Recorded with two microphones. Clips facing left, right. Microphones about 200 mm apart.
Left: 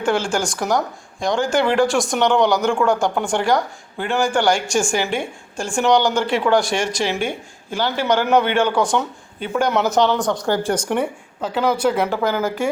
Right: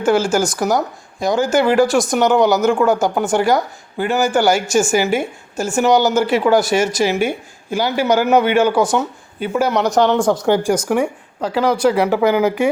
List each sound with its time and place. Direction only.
0.0 s speech: 5° right (ahead or behind)
10.2 s speech: 30° right (ahead or behind)
10.4 s speech: 15° right (ahead or behind)